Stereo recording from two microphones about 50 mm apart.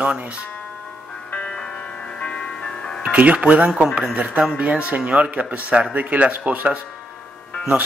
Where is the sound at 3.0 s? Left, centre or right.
Right.